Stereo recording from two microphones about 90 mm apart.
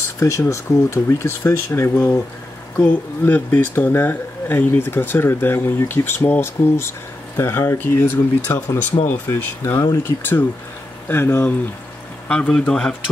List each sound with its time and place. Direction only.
0.2 s speech: 35° left (ahead or behind)
9.6 s speech: 35° left (ahead or behind)
12.3 s speech: 10° left (ahead or behind)